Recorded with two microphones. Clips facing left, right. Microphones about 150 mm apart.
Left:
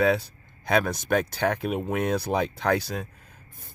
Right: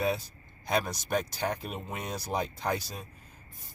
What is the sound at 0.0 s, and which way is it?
Speech, 70° left (ahead or behind).